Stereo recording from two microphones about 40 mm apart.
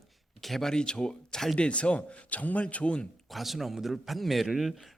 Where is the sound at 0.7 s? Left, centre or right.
Centre.